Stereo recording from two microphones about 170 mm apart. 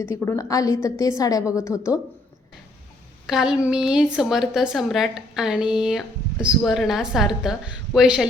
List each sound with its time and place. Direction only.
0.0 s a woman's voice: 15° left (ahead or behind)
3.2 s a woman's voice: 5° right (ahead or behind)